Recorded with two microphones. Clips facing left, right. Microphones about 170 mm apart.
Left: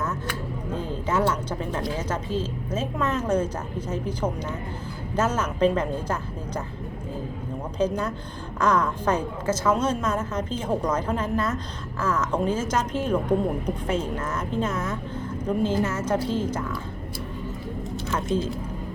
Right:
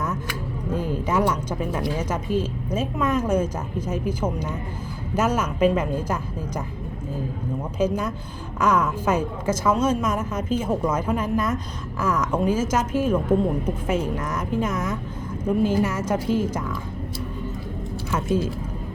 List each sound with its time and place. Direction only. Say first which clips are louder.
0.0 s music: right 1 dB; 10° right (ahead or behind)
0.9 s a woman's voice: right 1 dB; 10° right (ahead or behind)
7.8 s a woman's voice: right 1 dB; 10° right (ahead or behind)
18.1 s a woman's voice: right 2 dB; 10° right (ahead or behind)